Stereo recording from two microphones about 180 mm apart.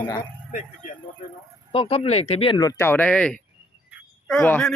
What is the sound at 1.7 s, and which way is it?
Speech, 30° left (ahead or behind).